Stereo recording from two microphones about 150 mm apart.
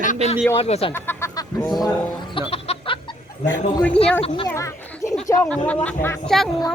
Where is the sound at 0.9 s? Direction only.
15° left (ahead or behind).